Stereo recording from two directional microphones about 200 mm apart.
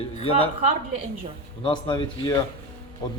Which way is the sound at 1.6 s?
25° left (ahead or behind).